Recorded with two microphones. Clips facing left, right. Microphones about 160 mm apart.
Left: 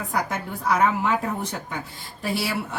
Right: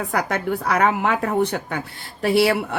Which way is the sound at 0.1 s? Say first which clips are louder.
Right 4 dB; 70° right (ahead or behind).